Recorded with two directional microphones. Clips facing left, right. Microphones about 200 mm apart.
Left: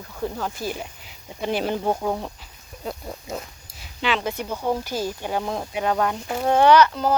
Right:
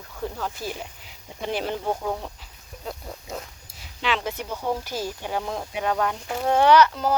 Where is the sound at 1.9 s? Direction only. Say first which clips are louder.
Left 3 dB; 25° left (ahead or behind).